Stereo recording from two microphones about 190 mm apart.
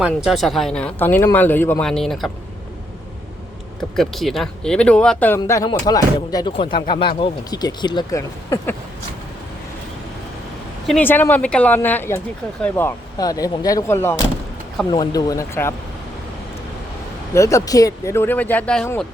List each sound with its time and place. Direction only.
0.3 s speech: centre (ahead or behind)
3.8 s speech: centre (ahead or behind)
10.8 s speech: 5° left (ahead or behind)
17.3 s speech: 15° left (ahead or behind)